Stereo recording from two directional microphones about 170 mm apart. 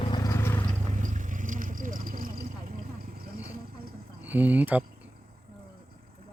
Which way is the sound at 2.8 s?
55° right (ahead or behind).